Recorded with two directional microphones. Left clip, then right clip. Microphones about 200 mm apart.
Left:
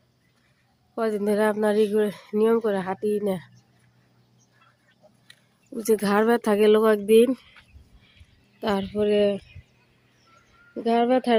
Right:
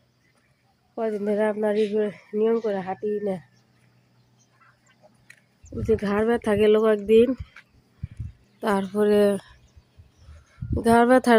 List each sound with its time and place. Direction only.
0.9 s speech: 15° left (ahead or behind)
5.3 s speech: 10° left (ahead or behind)
8.6 s speech: 10° right (ahead or behind)
10.8 s speech: 20° right (ahead or behind)